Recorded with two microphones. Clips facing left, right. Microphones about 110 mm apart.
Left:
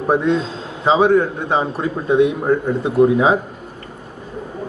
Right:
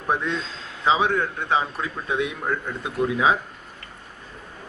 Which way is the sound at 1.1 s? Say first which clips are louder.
Left 7 dB; 25° left (ahead or behind).